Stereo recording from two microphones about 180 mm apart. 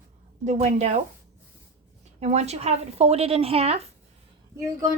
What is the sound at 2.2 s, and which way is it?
A woman's voice, 40° right (ahead or behind).